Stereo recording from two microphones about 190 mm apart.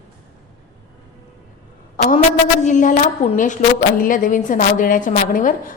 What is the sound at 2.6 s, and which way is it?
A woman's voice, 40° left (ahead or behind).